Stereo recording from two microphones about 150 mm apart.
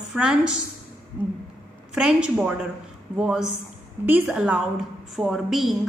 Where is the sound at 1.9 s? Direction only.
5° right (ahead or behind).